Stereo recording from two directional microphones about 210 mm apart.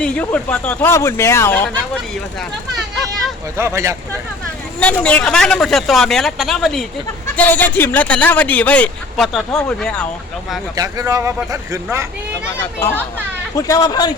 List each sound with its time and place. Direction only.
0.0 s a man's voice: 5° left (ahead or behind)
3.6 s speech: 15° right (ahead or behind)
4.8 s a man's voice: 5° left (ahead or behind)
10.8 s speech: 15° right (ahead or behind)
13.6 s a man's voice: 15° left (ahead or behind)